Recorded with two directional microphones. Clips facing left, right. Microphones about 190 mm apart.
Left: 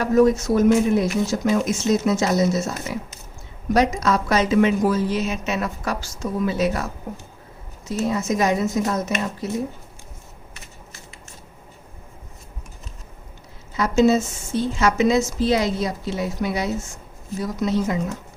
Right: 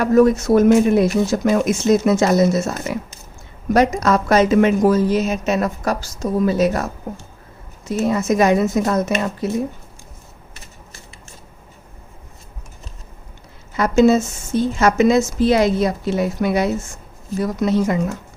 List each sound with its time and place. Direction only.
0.0 s a woman's voice: 60° right (ahead or behind); by 6.9 s 45° right (ahead or behind)
7.9 s a woman's voice: 60° right (ahead or behind)
13.7 s a woman's voice: 55° right (ahead or behind)